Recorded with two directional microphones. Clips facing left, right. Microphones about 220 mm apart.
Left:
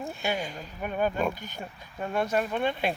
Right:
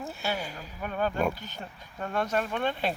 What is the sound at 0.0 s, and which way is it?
Speech, 15° left (ahead or behind).